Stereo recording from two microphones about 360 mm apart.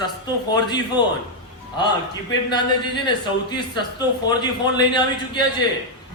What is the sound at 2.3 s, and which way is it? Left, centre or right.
A man's voice, centre.